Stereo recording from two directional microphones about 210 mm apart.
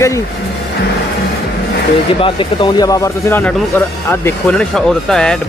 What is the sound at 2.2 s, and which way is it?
A man's voice, 25° left (ahead or behind).